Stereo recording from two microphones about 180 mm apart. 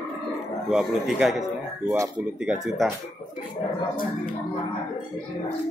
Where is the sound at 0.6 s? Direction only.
Centre (ahead or behind).